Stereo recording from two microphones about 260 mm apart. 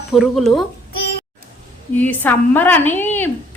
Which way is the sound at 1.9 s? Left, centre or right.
Centre.